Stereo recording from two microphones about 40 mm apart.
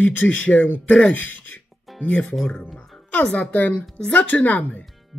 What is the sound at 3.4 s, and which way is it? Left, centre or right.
Speech, left.